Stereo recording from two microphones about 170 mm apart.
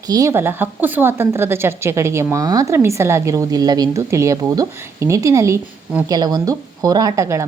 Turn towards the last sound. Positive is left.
turn(degrees=-15)  # may be behind; listen again after turning